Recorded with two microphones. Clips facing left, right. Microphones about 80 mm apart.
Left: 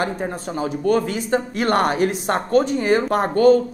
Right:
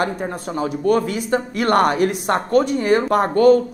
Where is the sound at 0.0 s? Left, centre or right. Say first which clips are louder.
Right 1 dB; right.